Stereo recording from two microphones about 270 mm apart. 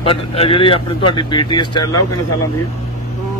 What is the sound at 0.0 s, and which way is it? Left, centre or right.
A man's voice, left.